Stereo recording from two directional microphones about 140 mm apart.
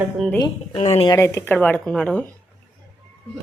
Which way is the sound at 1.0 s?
20° left (ahead or behind).